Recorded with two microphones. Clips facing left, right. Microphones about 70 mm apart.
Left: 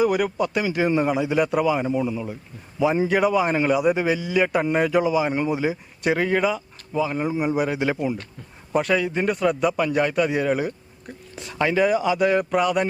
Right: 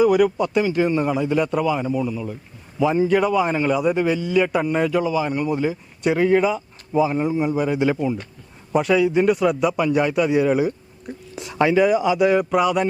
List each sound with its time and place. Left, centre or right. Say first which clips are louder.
0.0 s a man's voice: right 4 dB; centre; by 2.2 s left
3.1 s a man's voice: right 1 dB; centre
6.0 s a man's voice: right 4 dB; centre
7.2 s a man's voice: right 2 dB; centre
7.7 s a man's voice: right 3 dB; centre
11.3 s a sound: right 4 dB; centre
11.7 s a man's voice: right 2 dB; centre